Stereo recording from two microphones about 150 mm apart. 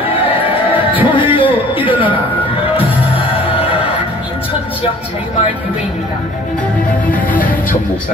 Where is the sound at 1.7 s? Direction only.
35° left (ahead or behind).